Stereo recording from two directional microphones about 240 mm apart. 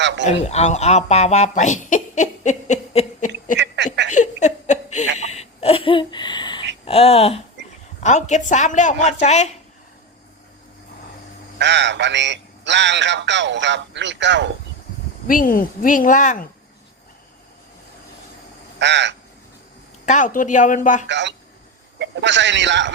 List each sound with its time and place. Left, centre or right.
0.3 s a woman's voice: left
4.1 s laughter: left
6.8 s a woman's voice: left
11.6 s a man's voice: right
15.3 s speech: left
18.8 s a man's voice: right
20.1 s speech: left
21.1 s a man's voice: right